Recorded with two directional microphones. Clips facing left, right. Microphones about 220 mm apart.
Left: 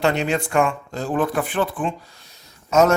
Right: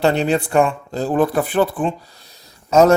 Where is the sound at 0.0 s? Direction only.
35° right (ahead or behind).